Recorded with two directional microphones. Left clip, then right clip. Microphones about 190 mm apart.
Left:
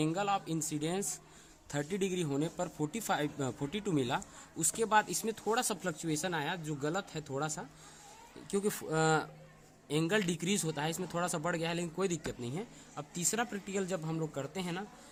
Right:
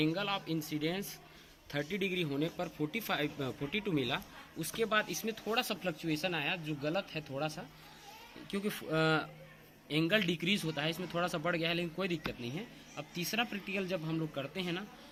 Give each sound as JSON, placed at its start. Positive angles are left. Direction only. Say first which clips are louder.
{"t": 0.0, "sound": "a man's voice", "louder": "left 1 dB", "side_deg": 45}
{"t": 8.4, "sound": "a man's voice", "louder": "left 3 dB", "side_deg": 50}